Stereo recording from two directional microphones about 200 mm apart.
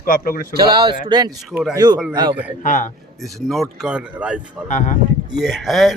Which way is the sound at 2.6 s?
40° left (ahead or behind).